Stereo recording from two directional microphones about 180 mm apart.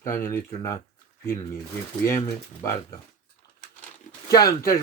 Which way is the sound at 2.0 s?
15° left (ahead or behind).